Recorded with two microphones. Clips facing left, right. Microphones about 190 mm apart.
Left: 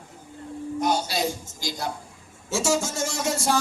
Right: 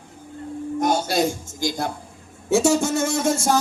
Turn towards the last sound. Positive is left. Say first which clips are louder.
# right 5 dB
turn(degrees=-45)  # may be behind; listen again after turning